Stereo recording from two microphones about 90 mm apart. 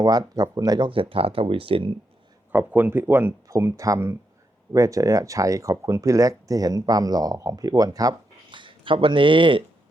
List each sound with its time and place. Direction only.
0.0 s speech: 45° right (ahead or behind)
0.9 s speech: 90° right
2.5 s speech: 20° right (ahead or behind)
3.5 s speech: 35° right (ahead or behind)
8.4 s speech: 65° right (ahead or behind)